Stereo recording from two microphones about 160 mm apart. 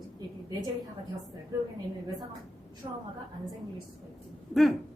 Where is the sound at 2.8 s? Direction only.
25° right (ahead or behind).